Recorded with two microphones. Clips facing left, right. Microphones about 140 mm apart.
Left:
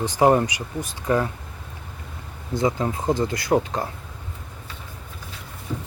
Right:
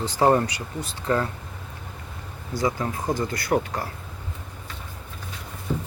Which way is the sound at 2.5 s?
25° left (ahead or behind).